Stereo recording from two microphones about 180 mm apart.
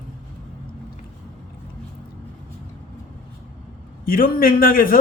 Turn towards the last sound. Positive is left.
turn(degrees=55)  # may be behind; listen again after turning